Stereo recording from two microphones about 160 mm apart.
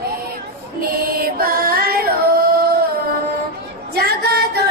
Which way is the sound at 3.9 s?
80° right.